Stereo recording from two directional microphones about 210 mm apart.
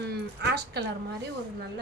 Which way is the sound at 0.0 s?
50° right (ahead or behind).